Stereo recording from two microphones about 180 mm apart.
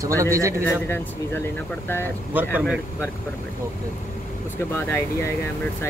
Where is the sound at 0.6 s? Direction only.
10° left (ahead or behind).